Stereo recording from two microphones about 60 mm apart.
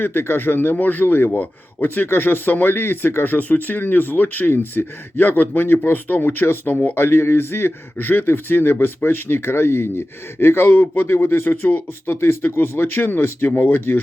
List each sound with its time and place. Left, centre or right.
0.0 s speech: left
13.6 s speech: left